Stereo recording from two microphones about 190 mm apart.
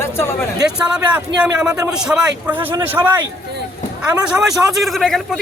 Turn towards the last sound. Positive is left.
turn(degrees=0)  # may be behind; listen again after turning